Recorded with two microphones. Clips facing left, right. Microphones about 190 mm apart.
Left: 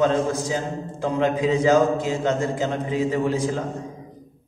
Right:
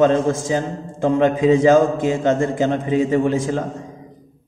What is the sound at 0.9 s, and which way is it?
A man's voice, 50° right (ahead or behind).